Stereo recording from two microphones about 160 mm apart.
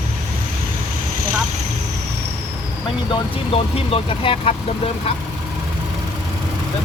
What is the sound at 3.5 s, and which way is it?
Speech, 35° left (ahead or behind).